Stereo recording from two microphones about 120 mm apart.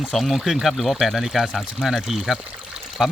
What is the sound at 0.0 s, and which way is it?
Speech, centre (ahead or behind).